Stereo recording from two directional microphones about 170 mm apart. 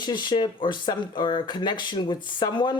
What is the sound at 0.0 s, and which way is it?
Speech, 25° left (ahead or behind).